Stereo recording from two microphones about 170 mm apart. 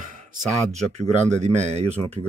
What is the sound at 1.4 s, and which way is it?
Speech, 40° right (ahead or behind).